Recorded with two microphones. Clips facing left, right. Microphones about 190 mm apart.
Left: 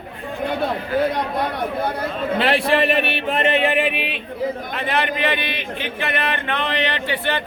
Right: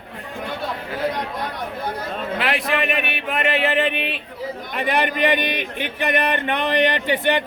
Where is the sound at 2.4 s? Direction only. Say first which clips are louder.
Left 5 dB; 30° left (ahead or behind); by 4.1 s 5° left (ahead or behind).